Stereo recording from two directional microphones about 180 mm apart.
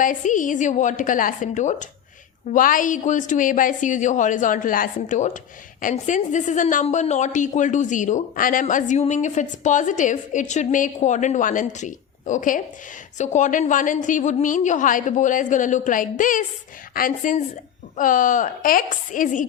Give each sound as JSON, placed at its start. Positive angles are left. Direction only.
{"t": 0.0, "sound": "a woman's voice", "side_deg": 45}